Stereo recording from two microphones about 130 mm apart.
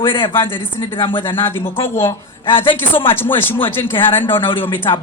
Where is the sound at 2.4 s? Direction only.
40° left (ahead or behind).